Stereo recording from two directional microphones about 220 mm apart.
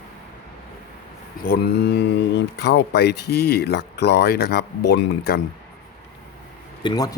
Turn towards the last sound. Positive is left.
turn(degrees=20)  # may be behind; listen again after turning